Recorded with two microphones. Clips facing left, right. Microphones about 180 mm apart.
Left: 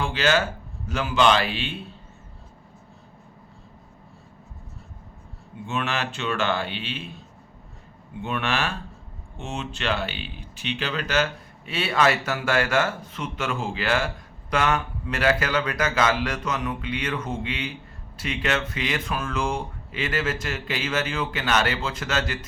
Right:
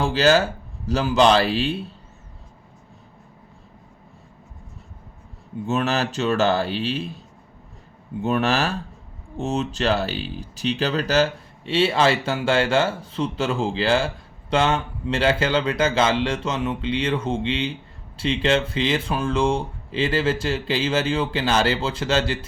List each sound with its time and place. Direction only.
0.0 s speech: 35° right (ahead or behind)
5.6 s speech: 40° right (ahead or behind)
8.2 s speech: 40° right (ahead or behind)